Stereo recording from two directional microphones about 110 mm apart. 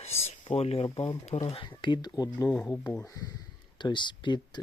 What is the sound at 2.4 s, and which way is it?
Speech, 10° left (ahead or behind).